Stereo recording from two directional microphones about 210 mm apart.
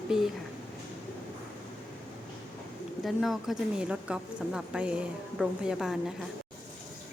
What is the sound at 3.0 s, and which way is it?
Speech, centre (ahead or behind).